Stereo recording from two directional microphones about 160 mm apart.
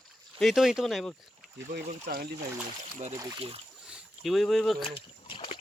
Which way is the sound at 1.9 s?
65° right (ahead or behind).